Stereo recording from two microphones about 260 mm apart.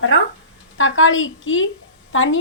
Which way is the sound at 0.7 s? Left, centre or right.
Left.